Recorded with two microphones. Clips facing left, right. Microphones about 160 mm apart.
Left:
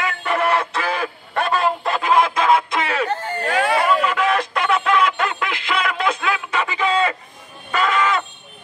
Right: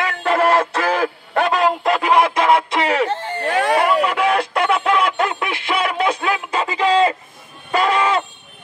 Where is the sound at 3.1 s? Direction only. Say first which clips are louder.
Right 1 dB; 25° right (ahead or behind).